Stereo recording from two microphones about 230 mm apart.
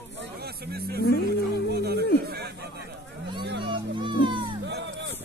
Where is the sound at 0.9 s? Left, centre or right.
Left.